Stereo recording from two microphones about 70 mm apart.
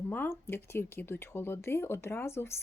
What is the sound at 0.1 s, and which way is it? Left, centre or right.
Speech, left.